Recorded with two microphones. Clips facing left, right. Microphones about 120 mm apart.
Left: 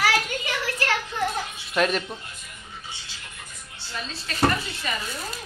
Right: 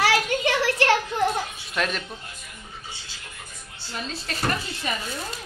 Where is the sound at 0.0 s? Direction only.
75° right (ahead or behind).